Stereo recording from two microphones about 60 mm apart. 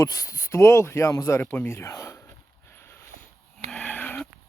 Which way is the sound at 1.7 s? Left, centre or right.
Left.